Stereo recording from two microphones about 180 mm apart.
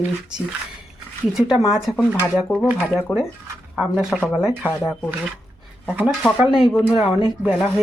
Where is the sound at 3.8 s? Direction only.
Centre (ahead or behind).